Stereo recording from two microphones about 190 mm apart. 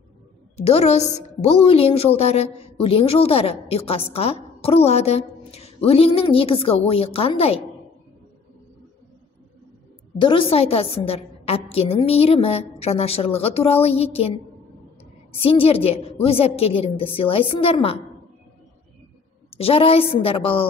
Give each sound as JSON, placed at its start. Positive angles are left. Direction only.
{"t": 0.6, "sound": "a woman's voice", "side_deg": 35}
{"t": 10.1, "sound": "a woman's voice", "side_deg": 25}
{"t": 15.4, "sound": "a woman's voice", "side_deg": 30}
{"t": 19.5, "sound": "a woman's voice", "side_deg": 30}